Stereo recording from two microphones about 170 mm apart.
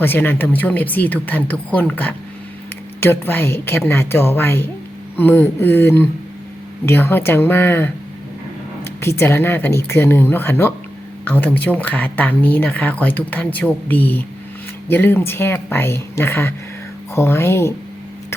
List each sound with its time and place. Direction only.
0.0 s speech: 10° left (ahead or behind)